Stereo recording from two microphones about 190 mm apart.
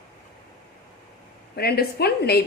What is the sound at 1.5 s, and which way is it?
Speech, 55° left (ahead or behind).